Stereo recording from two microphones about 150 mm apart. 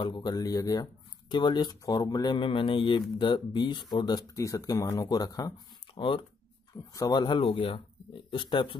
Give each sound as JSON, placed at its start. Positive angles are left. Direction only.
{"t": 0.0, "sound": "speech", "side_deg": 30}
{"t": 5.9, "sound": "speech", "side_deg": 35}
{"t": 6.9, "sound": "speech", "side_deg": 25}